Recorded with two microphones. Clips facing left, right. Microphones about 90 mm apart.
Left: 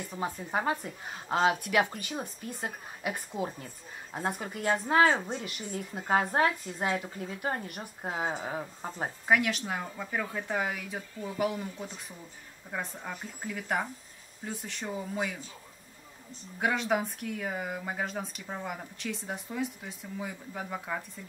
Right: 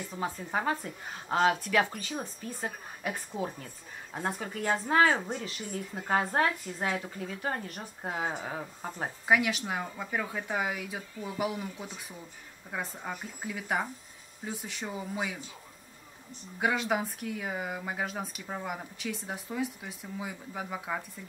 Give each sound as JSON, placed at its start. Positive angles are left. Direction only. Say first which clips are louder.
{"t": 0.1, "sound": "a woman's voice", "louder": "left 1 dB", "side_deg": 10}
{"t": 5.1, "sound": "speech", "louder": "even", "side_deg": -5}
{"t": 6.0, "sound": "a woman's voice", "louder": "left 1 dB", "side_deg": 15}
{"t": 8.0, "sound": "speech", "louder": "left 1 dB", "side_deg": 0}
{"t": 16.5, "sound": "speech", "louder": "even", "side_deg": -5}